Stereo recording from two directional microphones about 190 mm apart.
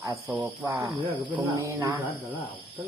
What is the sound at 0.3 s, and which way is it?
Speech, 10° right (ahead or behind).